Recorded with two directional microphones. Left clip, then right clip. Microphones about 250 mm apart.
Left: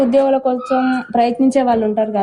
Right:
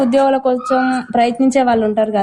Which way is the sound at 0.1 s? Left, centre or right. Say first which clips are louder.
Right 1 dB; right.